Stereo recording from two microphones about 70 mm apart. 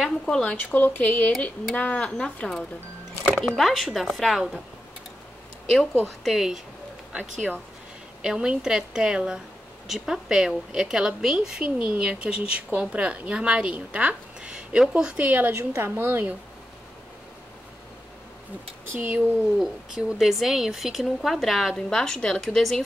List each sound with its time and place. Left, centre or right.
0.3 s a woman's voice: centre
0.7 s a woman's voice: left
3.3 s music: centre
3.5 s speech: centre
6.0 s speech: centre
7.1 s a woman's voice: centre
15.5 s a woman's voice: right
18.9 s speech: right
19.6 s a woman's voice: centre